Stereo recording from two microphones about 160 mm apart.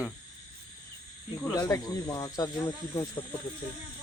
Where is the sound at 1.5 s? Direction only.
20° left (ahead or behind).